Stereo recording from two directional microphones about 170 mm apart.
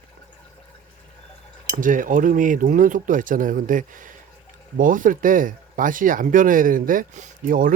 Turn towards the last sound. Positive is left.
turn(degrees=-55)  # may be behind; listen again after turning